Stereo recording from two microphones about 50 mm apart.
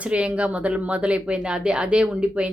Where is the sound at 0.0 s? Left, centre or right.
Right.